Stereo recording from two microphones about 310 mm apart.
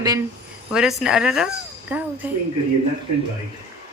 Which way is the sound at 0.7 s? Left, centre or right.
Centre.